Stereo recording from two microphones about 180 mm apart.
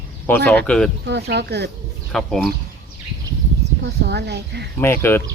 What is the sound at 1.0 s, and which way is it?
Speech, 70° right (ahead or behind).